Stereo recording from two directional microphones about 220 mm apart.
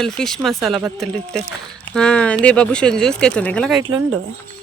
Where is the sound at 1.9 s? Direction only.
5° left (ahead or behind).